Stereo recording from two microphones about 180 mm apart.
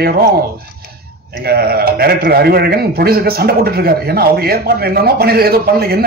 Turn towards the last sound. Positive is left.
turn(degrees=-60)  # may be behind; listen again after turning